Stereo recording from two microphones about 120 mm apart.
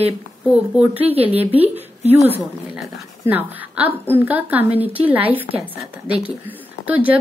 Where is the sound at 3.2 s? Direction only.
15° right (ahead or behind).